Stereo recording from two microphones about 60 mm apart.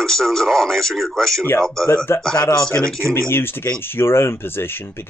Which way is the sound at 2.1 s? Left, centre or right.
Left.